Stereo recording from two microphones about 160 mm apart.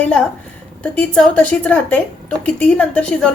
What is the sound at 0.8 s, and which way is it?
A woman's voice, 5° left (ahead or behind).